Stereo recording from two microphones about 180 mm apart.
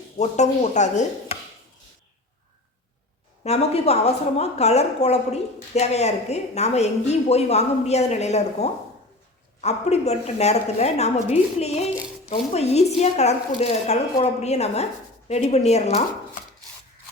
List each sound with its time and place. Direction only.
0.2 s a woman's voice: 40° left (ahead or behind)
3.4 s a woman's voice: 35° left (ahead or behind)